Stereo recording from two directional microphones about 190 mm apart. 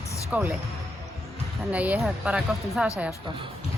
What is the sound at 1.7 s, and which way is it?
A woman's voice, 5° right (ahead or behind).